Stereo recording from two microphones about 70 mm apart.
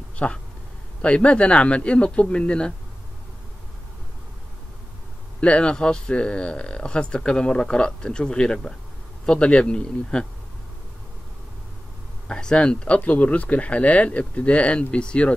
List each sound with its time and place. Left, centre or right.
0.1 s a sound: centre
1.0 s speech: centre
5.4 s speech: centre
12.3 s speech: centre